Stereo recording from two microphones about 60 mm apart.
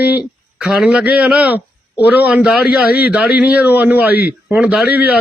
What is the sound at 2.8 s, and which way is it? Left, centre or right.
A man's voice, right.